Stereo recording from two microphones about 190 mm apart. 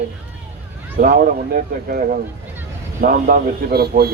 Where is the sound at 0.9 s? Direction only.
50° right (ahead or behind).